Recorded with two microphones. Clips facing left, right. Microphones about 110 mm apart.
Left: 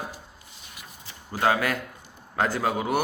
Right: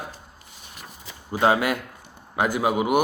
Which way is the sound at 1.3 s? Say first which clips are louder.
Right 3 dB; 20° right (ahead or behind).